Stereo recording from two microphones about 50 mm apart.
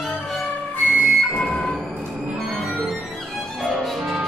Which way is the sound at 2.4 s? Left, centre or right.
Centre.